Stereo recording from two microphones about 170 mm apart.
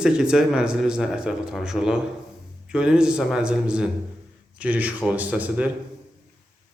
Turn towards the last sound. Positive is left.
turn(degrees=-10)  # may be behind; listen again after turning